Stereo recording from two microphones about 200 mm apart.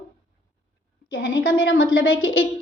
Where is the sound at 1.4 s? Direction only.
75° left (ahead or behind).